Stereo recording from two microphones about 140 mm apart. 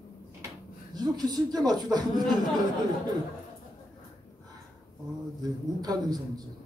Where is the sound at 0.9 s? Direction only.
30° right (ahead or behind).